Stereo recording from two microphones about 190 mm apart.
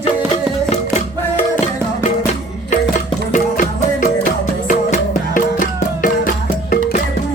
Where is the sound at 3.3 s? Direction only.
45° left (ahead or behind).